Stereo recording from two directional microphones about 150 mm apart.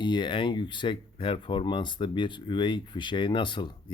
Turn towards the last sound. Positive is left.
turn(degrees=30)  # may be behind; listen again after turning